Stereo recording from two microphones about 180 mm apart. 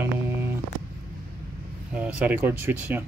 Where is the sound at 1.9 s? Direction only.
10° right (ahead or behind).